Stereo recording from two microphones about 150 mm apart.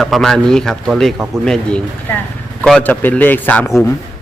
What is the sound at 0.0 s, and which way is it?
Speech, centre (ahead or behind).